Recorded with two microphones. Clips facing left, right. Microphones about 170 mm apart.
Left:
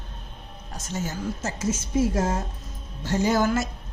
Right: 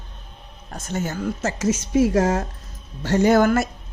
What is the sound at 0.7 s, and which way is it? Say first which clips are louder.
Speech: right 4 dB; 55° right (ahead or behind).